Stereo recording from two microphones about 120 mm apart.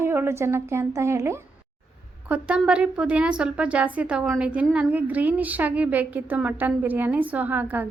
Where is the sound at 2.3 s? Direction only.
10° right (ahead or behind).